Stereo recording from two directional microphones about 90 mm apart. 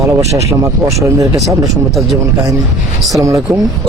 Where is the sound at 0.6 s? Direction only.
35° right (ahead or behind).